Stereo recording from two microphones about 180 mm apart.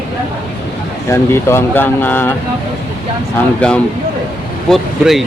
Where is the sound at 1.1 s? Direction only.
15° left (ahead or behind).